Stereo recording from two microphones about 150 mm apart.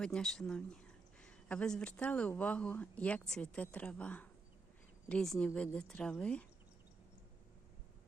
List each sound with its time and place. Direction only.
0.0 s speech: 5° left (ahead or behind)